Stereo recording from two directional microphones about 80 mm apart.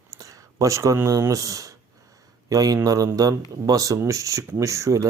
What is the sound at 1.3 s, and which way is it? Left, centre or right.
Speech, right.